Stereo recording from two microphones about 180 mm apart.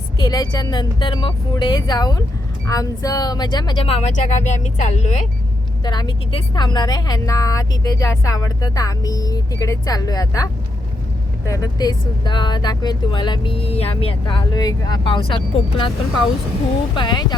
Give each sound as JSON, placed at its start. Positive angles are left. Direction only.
{"t": 0.2, "sound": "a woman's voice", "side_deg": 20}
{"t": 5.8, "sound": "a woman's voice", "side_deg": 25}
{"t": 16.9, "sound": "a woman's voice", "side_deg": 25}